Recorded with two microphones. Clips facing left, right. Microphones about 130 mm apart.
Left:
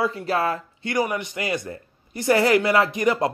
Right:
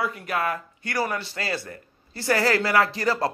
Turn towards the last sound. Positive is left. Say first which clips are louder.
# left 3 dB
turn(degrees=20)  # may be behind; listen again after turning